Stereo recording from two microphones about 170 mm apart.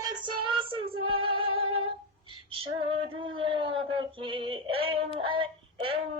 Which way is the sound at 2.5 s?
30° right (ahead or behind).